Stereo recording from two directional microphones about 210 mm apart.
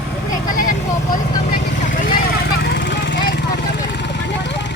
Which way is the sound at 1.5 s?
40° left (ahead or behind).